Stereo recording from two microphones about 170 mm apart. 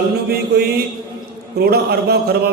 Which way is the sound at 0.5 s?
65° right (ahead or behind).